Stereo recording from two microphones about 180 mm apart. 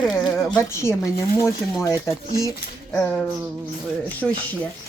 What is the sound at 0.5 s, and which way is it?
Speech, 15° left (ahead or behind).